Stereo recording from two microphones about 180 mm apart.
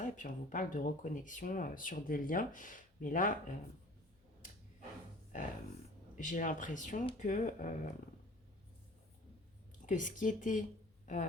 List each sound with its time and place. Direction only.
0.0 s speech: 45° left (ahead or behind)
5.3 s speech: 45° left (ahead or behind)
7.0 s speech: 30° left (ahead or behind)
7.3 s speech: 45° left (ahead or behind)
9.8 s speech: 45° left (ahead or behind)
11.0 s a sound: 45° left (ahead or behind)